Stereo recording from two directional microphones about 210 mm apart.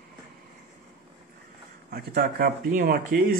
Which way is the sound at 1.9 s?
45° right (ahead or behind).